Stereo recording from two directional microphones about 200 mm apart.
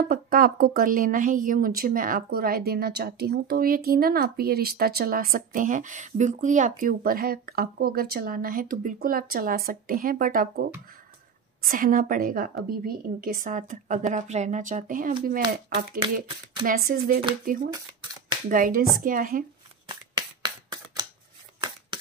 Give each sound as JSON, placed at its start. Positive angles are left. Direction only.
{"t": 0.1, "sound": "a woman's voice", "side_deg": -45}
{"t": 19.9, "sound": "shuffling cards", "side_deg": -20}